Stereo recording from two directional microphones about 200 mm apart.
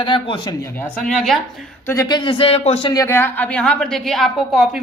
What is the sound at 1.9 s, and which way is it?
A woman's voice, 20° left (ahead or behind).